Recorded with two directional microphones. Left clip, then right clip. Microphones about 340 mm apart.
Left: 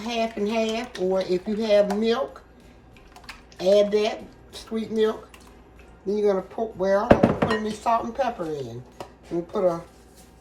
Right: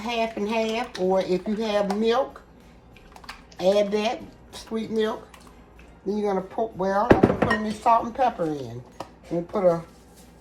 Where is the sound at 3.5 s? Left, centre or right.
Centre.